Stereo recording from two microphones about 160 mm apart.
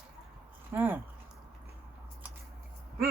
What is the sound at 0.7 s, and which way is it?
Speech, 10° right (ahead or behind).